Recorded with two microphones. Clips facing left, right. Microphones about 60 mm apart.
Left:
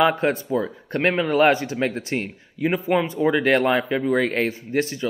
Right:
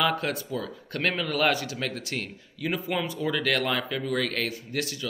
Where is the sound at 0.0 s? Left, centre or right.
Left.